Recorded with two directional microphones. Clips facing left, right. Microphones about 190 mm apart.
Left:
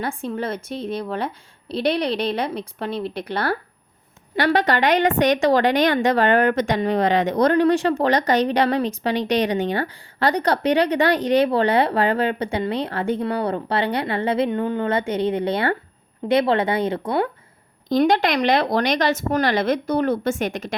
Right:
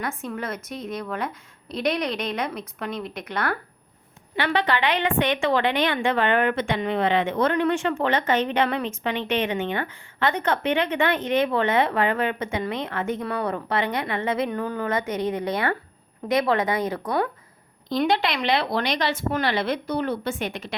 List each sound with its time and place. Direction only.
0.0 s a woman's voice: 30° left (ahead or behind)
17.8 s speech: 45° left (ahead or behind)